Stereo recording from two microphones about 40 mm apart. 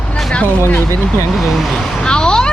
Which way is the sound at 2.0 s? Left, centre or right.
Centre.